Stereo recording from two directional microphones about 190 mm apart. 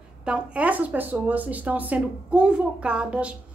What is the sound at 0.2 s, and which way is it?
Speech, 5° right (ahead or behind).